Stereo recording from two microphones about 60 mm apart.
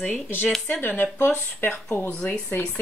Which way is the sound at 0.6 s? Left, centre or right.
Left.